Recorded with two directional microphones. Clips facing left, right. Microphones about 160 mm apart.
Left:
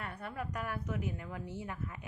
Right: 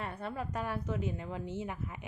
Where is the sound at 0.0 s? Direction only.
25° right (ahead or behind).